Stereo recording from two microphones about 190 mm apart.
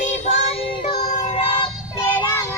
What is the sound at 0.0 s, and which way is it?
Child singing, 40° left (ahead or behind).